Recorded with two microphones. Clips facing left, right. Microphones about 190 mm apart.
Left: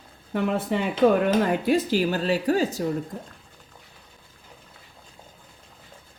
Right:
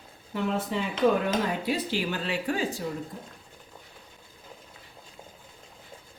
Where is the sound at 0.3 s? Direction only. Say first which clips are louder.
Left 4 dB; 55° left (ahead or behind).